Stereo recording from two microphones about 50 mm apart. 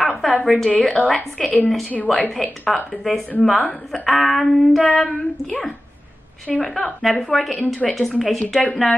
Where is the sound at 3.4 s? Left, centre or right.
Centre.